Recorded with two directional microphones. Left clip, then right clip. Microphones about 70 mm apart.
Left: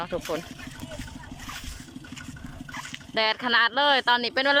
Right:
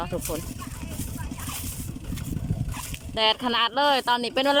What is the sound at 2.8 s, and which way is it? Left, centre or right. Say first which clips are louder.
Speech: even; centre.